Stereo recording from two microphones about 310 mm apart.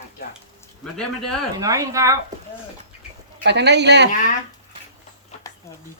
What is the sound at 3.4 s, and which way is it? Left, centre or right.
Speech, right.